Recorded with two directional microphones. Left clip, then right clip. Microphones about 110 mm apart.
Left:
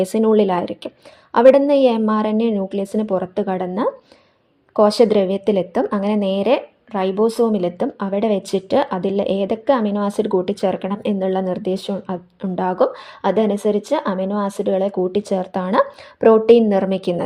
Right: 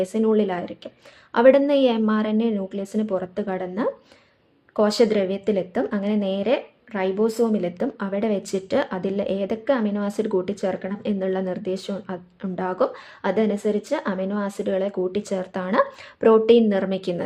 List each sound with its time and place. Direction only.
0.0 s a woman's voice: 45° left (ahead or behind)
1.3 s a woman's voice: 35° left (ahead or behind)